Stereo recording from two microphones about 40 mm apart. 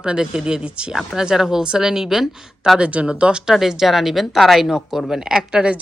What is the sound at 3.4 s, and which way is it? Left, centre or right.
A woman's voice, centre.